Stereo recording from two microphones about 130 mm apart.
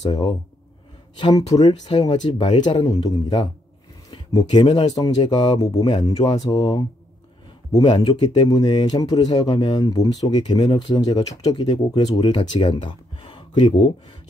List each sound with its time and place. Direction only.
0.1 s speech: 35° left (ahead or behind); by 3.4 s 50° left (ahead or behind)
4.3 s speech: 35° left (ahead or behind)
8.1 s speech: 35° left (ahead or behind)
12.8 s a sound: 40° left (ahead or behind)